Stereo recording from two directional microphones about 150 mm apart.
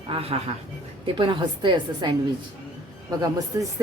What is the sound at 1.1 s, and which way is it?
A woman's voice, 35° right (ahead or behind).